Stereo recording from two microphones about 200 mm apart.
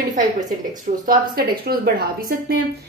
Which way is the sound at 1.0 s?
50° right (ahead or behind).